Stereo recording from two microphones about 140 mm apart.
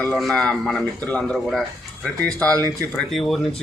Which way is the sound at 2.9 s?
Centre (ahead or behind).